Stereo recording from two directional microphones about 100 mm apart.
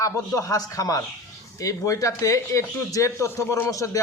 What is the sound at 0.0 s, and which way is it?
Speech, 35° left (ahead or behind).